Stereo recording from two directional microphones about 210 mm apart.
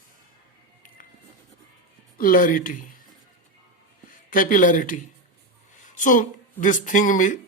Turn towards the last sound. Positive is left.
turn(degrees=40)  # may be behind; listen again after turning